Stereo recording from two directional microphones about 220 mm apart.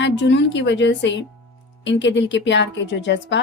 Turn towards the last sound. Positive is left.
turn(degrees=55)  # may be behind; listen again after turning